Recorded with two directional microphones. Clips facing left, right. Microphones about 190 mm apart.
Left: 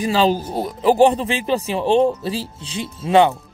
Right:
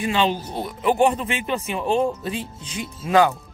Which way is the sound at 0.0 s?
35° left (ahead or behind).